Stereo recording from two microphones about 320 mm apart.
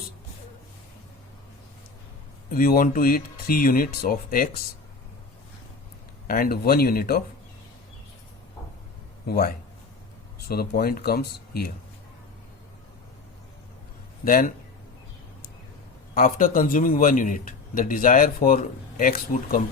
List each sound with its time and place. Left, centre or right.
2.5 s a man's voice: left
6.2 s a man's voice: left
9.2 s a man's voice: left
10.5 s a man's voice: left
14.3 s a man's voice: left
16.1 s a man's voice: left